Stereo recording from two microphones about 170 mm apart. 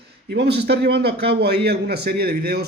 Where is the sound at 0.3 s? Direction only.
80° right.